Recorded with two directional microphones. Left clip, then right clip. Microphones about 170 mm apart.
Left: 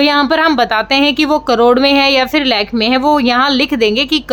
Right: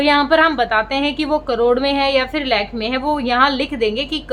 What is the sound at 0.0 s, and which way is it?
A woman's voice, 50° left (ahead or behind).